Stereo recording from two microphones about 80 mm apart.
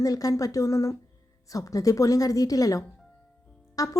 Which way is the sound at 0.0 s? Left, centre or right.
Left.